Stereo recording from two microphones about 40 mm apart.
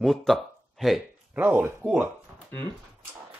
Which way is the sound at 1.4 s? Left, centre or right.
Right.